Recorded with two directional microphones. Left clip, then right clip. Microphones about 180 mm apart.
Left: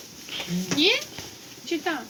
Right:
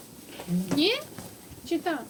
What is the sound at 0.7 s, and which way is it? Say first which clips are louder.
Speech: left 4 dB; 85° right.